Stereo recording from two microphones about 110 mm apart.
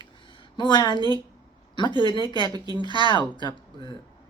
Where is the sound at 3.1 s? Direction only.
45° left (ahead or behind).